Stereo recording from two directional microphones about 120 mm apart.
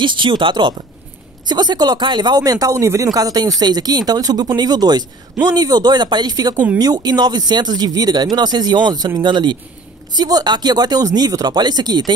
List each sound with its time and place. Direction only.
0.0 s speech: 40° right (ahead or behind)